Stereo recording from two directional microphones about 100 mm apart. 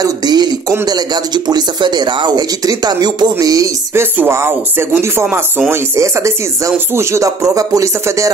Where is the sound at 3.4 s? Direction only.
35° right (ahead or behind).